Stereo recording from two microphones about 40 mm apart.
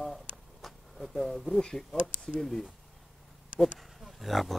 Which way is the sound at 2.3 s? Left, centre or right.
Centre.